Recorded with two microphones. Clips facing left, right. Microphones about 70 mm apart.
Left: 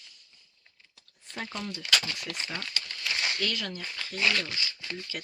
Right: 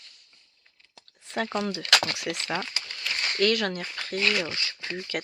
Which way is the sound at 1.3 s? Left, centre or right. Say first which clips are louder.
Right 8 dB; right.